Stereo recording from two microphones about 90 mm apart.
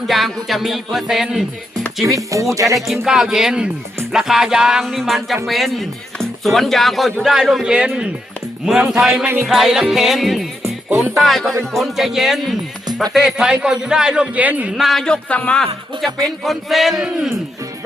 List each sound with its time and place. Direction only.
0.1 s speech: centre (ahead or behind)
2.0 s speech: 35° right (ahead or behind)
2.7 s speech: centre (ahead or behind)
9.0 s music: 20° right (ahead or behind)
9.5 s speech: 5° right (ahead or behind)
10.8 s music: 25° right (ahead or behind)
11.2 s a man's voice: centre (ahead or behind); by 14.7 s 15° right (ahead or behind)
14.8 s speech: centre (ahead or behind)
16.0 s speech: 40° right (ahead or behind)
16.4 s speech: centre (ahead or behind)